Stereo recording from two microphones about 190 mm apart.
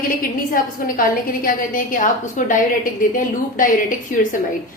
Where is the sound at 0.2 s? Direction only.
50° left (ahead or behind).